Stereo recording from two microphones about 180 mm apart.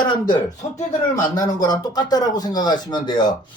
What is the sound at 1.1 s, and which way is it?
Speech, 20° left (ahead or behind).